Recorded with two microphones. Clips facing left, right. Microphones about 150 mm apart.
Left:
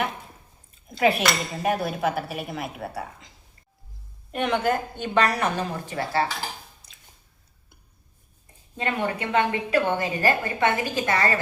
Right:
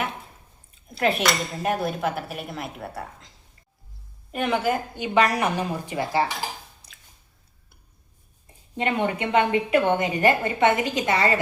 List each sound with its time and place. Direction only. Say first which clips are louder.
0.9 s dishes: left 1 dB; centre (ahead or behind)
4.3 s a woman's voice: even; centre (ahead or behind)
8.7 s a woman's voice: right 2 dB; 20° right (ahead or behind)